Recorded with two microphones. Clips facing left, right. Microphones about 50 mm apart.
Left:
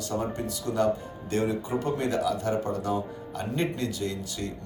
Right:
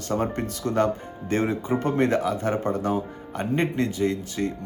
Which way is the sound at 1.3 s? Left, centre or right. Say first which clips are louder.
Right 3 dB; right.